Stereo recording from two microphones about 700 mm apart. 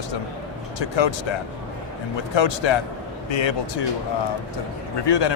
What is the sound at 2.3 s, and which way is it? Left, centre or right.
Speech, left.